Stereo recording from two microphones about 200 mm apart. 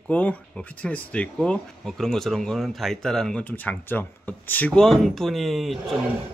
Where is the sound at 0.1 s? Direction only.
5° left (ahead or behind).